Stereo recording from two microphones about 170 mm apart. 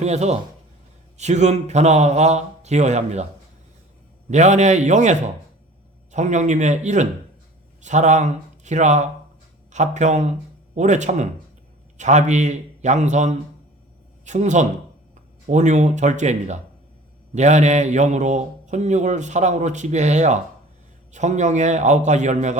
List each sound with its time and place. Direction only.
0.0 s speech: 40° right (ahead or behind)
4.3 s a man's voice: 45° right (ahead or behind)